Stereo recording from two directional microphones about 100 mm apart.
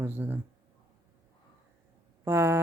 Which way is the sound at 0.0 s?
20° right (ahead or behind).